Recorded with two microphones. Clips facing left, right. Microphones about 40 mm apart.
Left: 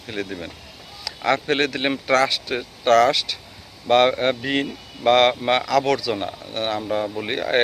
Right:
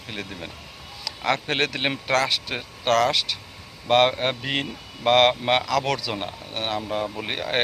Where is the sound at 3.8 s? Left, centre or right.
Right.